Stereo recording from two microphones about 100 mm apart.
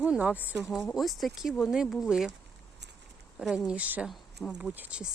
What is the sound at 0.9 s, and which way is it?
Speech, centre (ahead or behind).